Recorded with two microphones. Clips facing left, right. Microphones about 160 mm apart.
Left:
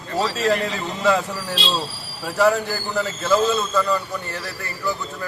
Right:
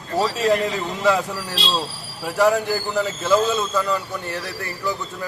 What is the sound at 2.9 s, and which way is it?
A man's voice, 15° right (ahead or behind).